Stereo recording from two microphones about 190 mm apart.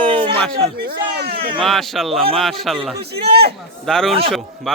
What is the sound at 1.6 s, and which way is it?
Speech, centre (ahead or behind).